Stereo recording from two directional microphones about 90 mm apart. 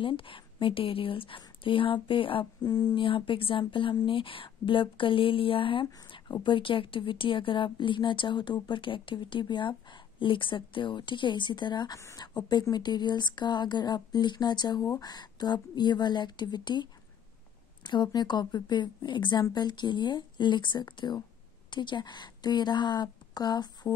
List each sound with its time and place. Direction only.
0.0 s speech: 75° left (ahead or behind)
2.6 s speech: 45° left (ahead or behind)
2.9 s speech: 70° left (ahead or behind)
11.9 s speech: 35° left (ahead or behind)
12.2 s speech: 50° left (ahead or behind)